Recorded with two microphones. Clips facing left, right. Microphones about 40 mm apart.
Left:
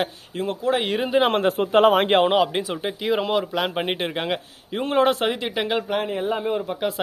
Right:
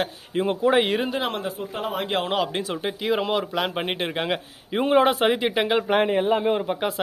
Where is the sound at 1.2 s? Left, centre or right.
Left.